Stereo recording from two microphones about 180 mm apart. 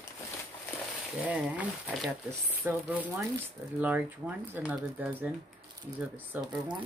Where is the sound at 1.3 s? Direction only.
5° right (ahead or behind).